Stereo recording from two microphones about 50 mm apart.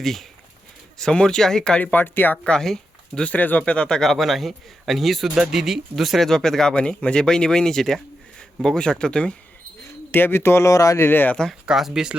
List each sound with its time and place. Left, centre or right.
0.0 s a man's voice: centre
0.9 s speech: centre
1.8 s speech: left
2.4 s speech: centre
3.3 s speech: left
3.7 s a man's voice: centre
6.2 s speech: centre
6.7 s speech: left
10.1 s speech: left
11.0 s speech: left
11.6 s speech: centre